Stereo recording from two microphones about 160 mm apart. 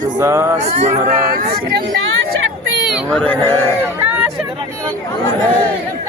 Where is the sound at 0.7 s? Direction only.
45° right (ahead or behind).